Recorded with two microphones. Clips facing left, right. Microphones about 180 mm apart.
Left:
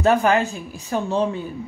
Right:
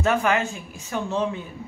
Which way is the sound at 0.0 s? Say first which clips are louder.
Left 4 dB; 35° left (ahead or behind).